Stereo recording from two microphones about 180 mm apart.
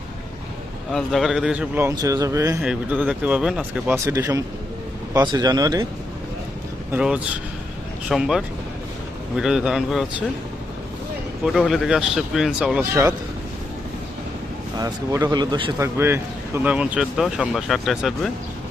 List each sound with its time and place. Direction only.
0.9 s a man's voice: centre (ahead or behind); by 2.6 s 20° right (ahead or behind)
2.6 s speech: 5° right (ahead or behind)
3.9 s a man's voice: 15° right (ahead or behind)
6.9 s a man's voice: 5° right (ahead or behind)
11.4 s a man's voice: centre (ahead or behind)
14.8 s speech: 20° right (ahead or behind)
15.8 s a man's voice: 15° right (ahead or behind)